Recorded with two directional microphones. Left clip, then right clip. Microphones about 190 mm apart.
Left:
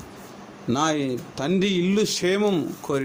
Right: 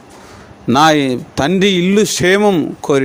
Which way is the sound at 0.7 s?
50° right (ahead or behind).